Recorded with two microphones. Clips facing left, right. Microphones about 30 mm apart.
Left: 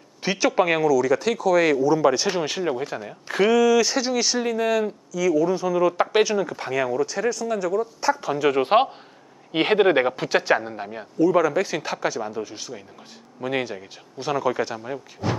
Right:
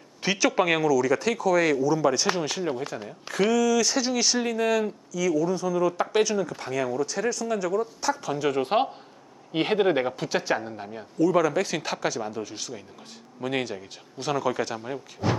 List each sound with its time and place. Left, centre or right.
0.2 s speech: centre